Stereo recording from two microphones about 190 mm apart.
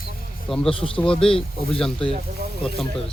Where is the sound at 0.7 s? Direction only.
30° left (ahead or behind).